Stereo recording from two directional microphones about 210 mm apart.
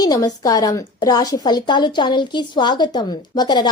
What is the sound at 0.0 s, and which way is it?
A woman's voice, 15° left (ahead or behind).